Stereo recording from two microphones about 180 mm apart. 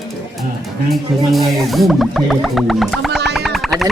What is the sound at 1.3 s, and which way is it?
Speech, centre (ahead or behind).